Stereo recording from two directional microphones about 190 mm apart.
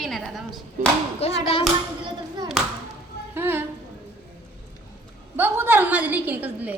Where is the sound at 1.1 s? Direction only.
30° left (ahead or behind).